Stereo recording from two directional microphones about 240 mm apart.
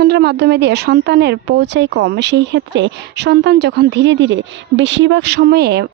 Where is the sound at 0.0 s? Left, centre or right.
Right.